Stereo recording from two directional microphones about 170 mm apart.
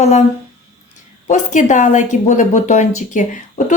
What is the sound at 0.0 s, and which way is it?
Speech, 40° left (ahead or behind).